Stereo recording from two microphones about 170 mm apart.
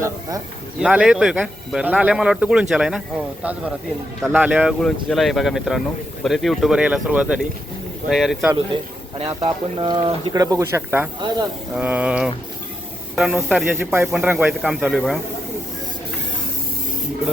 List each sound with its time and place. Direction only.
0.0 s speech: 20° right (ahead or behind)
0.8 s a man's voice: 5° right (ahead or behind)
4.2 s a sound: 5° right (ahead or behind)
4.8 s a man's voice: 5° left (ahead or behind)
8.5 s speech: 35° right (ahead or behind); by 11.1 s 15° right (ahead or behind)
11.7 s a sound: 10° right (ahead or behind)
13.1 s a man's voice: centre (ahead or behind)
13.7 s a sound: 10° right (ahead or behind)
14.1 s a man's voice: 5° right (ahead or behind)